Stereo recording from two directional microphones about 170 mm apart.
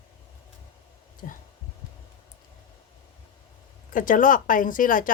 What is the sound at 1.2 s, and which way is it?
Speech, 50° left (ahead or behind).